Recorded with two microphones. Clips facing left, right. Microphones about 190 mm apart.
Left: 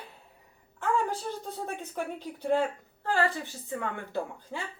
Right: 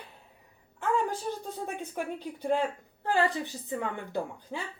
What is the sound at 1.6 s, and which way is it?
Speech, 15° right (ahead or behind).